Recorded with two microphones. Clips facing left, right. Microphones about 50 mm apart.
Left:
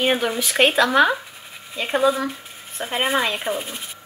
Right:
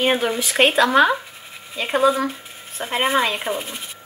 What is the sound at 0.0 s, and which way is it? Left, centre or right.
Speech, centre.